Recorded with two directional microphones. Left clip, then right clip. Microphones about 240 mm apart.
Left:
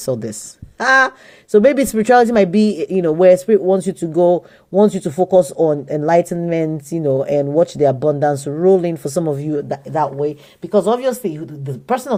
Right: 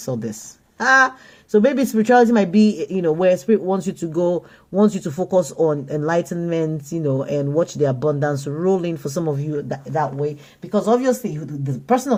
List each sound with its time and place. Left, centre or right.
0.0 s speech: left